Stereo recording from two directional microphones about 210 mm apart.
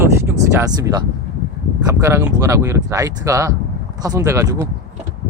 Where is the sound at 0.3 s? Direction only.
15° right (ahead or behind).